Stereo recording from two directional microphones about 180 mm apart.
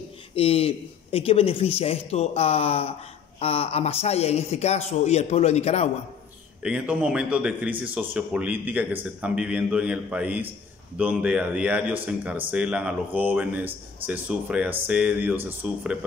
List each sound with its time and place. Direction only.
0.3 s speech: 30° left (ahead or behind)
6.6 s a man's voice: 5° right (ahead or behind)